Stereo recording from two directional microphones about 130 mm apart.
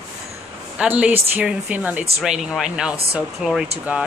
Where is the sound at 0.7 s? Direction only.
10° right (ahead or behind).